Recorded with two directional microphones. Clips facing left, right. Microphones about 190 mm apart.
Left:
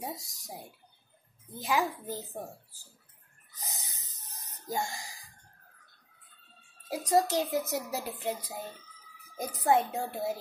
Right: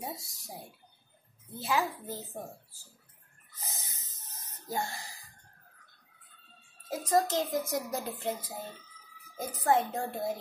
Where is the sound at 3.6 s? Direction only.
15° left (ahead or behind).